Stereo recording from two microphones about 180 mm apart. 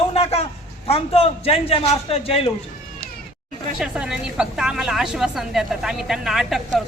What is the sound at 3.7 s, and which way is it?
A woman's voice, 5° right (ahead or behind).